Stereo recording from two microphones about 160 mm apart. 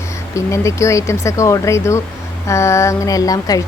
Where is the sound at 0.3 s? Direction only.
20° left (ahead or behind).